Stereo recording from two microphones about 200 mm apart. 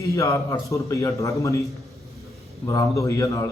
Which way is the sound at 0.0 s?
15° left (ahead or behind).